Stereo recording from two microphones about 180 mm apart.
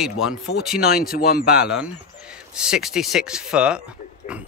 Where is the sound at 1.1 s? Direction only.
55° left (ahead or behind).